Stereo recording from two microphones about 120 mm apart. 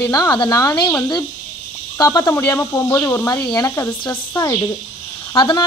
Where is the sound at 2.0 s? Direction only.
30° left (ahead or behind).